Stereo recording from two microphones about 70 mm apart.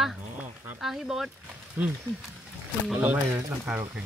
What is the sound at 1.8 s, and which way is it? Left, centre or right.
Speech, right.